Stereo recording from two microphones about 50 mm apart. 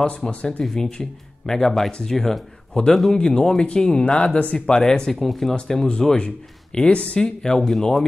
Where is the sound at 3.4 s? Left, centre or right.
Centre.